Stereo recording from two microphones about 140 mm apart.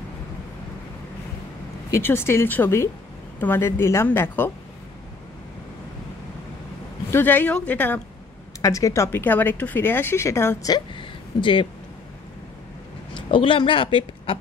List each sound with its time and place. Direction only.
1.9 s speech: 15° left (ahead or behind)
7.1 s speech: 15° left (ahead or behind)
8.5 s speech: 25° left (ahead or behind)
10.7 s speech: 35° left (ahead or behind)
13.1 s a woman's voice: 35° left (ahead or behind)